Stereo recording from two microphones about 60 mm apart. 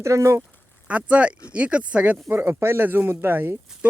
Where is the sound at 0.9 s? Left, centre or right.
Right.